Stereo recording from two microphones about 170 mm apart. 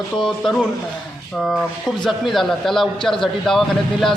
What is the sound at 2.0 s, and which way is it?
A man's voice, centre (ahead or behind).